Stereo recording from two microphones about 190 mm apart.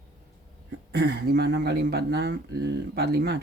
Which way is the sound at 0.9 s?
60° right (ahead or behind).